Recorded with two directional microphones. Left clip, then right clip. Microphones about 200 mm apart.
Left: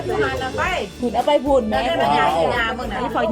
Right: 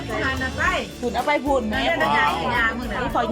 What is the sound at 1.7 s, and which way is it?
Speech, 55° left (ahead or behind).